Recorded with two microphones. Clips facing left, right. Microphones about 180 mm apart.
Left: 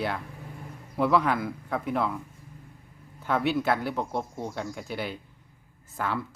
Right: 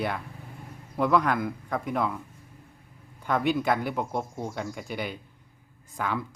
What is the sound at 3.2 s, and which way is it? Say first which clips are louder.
Speech: even; 5° left (ahead or behind).